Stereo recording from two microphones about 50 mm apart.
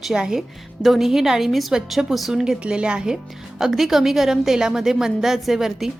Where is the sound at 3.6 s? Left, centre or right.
Centre.